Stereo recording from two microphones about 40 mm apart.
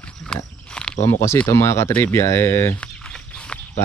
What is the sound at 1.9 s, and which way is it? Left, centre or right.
Speech, left.